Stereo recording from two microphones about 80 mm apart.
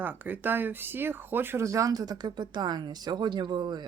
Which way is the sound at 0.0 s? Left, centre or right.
Right.